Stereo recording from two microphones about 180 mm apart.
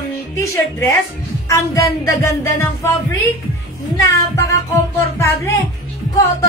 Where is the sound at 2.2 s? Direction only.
15° left (ahead or behind).